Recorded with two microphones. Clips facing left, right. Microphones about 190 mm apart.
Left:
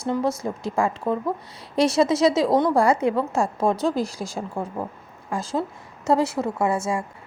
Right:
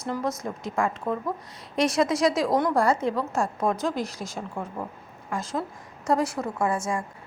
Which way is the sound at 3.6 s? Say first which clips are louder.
Left 6 dB; 30° left (ahead or behind).